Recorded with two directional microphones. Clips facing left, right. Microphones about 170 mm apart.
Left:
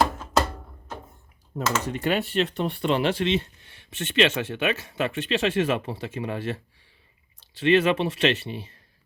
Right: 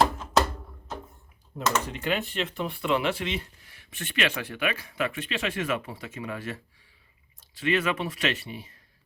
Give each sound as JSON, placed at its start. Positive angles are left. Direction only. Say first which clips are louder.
{"t": 1.5, "sound": "speech", "louder": "left 1 dB", "side_deg": 40}
{"t": 2.5, "sound": "speech", "louder": "left 4 dB", "side_deg": 70}
{"t": 2.8, "sound": "speech", "louder": "left 3 dB", "side_deg": 30}